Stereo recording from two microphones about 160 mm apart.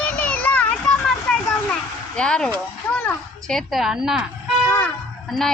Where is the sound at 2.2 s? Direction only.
5° left (ahead or behind).